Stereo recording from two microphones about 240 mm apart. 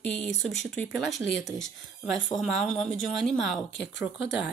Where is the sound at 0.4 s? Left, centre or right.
Centre.